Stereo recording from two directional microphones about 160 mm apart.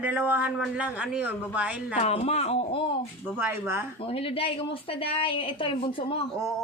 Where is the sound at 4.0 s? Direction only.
35° left (ahead or behind).